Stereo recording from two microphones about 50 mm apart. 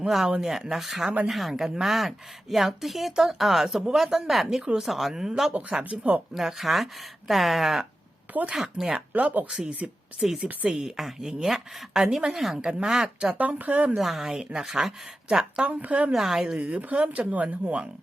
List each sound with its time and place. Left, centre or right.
0.3 s a woman's voice: centre
5.5 s speech: right
6.3 s a woman's voice: centre
9.1 s speech: right
9.5 s speech: right
10.2 s a woman's voice: centre
13.4 s speech: right
13.9 s a woman's voice: centre
15.5 s speech: right
16.1 s a woman's voice: centre
16.6 s speech: right